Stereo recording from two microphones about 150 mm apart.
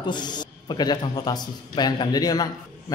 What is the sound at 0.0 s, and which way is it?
A man's voice, 30° left (ahead or behind).